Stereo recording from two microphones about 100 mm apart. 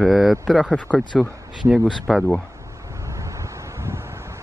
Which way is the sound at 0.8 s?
15° left (ahead or behind).